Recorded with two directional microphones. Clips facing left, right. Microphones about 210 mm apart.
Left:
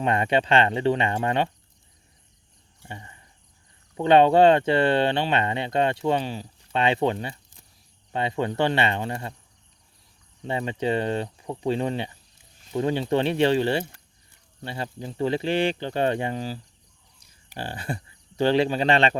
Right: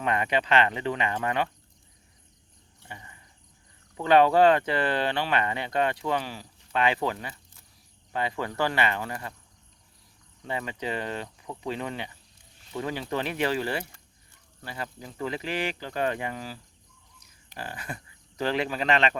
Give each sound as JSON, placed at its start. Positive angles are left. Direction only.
{"t": 0.0, "sound": "speech", "side_deg": 30}
{"t": 3.9, "sound": "speech", "side_deg": 25}
{"t": 10.4, "sound": "speech", "side_deg": 25}
{"t": 17.6, "sound": "speech", "side_deg": 30}